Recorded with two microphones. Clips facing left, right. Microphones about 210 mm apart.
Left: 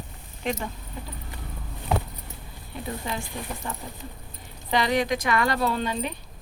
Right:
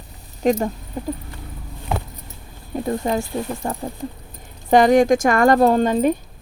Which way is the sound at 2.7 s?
45° right (ahead or behind).